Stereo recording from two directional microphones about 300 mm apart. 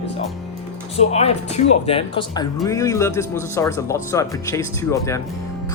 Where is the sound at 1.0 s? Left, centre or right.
Left.